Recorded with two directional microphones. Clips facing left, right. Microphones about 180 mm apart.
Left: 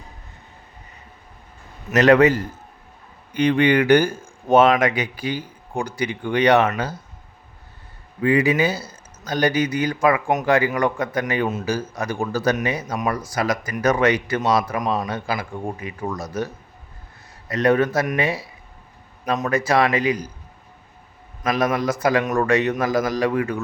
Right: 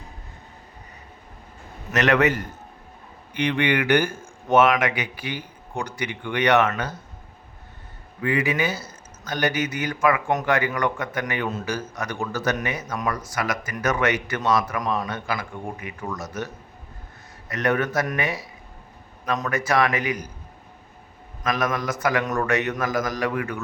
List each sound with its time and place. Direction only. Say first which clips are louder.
1.9 s a man's voice: left 6 dB; 35° left (ahead or behind)
8.2 s a man's voice: left 5 dB; 30° left (ahead or behind)
17.5 s speech: left 5 dB; 30° left (ahead or behind)
19.3 s speech: left 3 dB; 30° left (ahead or behind)
21.4 s speech: left 4 dB; 30° left (ahead or behind)